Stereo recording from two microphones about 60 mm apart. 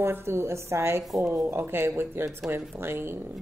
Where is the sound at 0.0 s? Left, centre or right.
Right.